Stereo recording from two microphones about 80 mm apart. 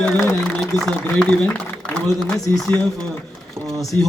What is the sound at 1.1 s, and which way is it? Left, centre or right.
Speech, centre.